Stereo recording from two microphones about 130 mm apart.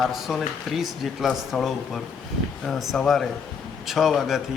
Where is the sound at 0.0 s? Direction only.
Centre (ahead or behind).